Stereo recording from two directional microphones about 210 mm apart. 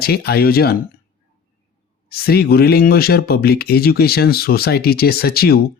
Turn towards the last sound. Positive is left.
turn(degrees=45)  # may be behind; listen again after turning